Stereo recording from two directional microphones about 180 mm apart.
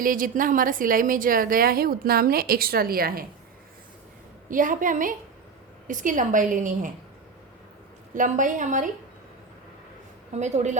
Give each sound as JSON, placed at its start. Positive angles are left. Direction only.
{"t": 0.0, "sound": "a woman's voice", "side_deg": -50}
{"t": 4.4, "sound": "a woman's voice", "side_deg": -50}
{"t": 8.1, "sound": "a woman's voice", "side_deg": -45}
{"t": 10.3, "sound": "a woman's voice", "side_deg": -40}